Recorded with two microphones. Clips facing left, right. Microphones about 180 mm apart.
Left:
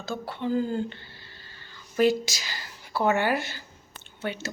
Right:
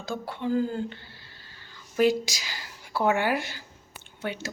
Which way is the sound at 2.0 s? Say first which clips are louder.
Even; 10° right (ahead or behind).